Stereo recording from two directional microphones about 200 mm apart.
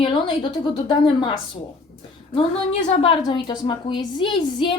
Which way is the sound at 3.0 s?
25° left (ahead or behind).